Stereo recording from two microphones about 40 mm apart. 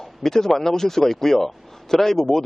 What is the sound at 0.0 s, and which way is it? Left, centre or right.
Speech, centre.